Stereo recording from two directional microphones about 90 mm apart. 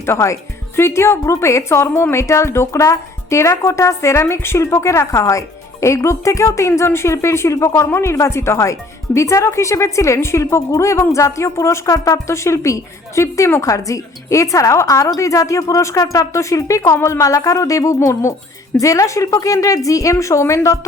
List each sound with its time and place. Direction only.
0.0 s a woman's voice: 30° left (ahead or behind)